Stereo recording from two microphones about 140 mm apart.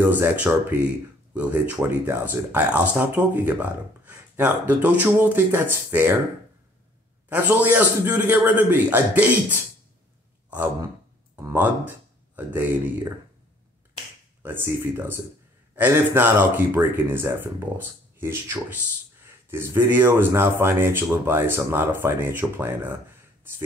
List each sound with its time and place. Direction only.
0.0 s speech: 15° right (ahead or behind)
7.2 s speech: 10° right (ahead or behind)
14.4 s speech: 15° right (ahead or behind)